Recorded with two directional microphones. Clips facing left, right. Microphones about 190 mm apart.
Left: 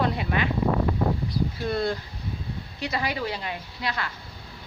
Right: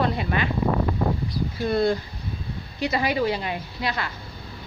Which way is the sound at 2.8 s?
10° right (ahead or behind).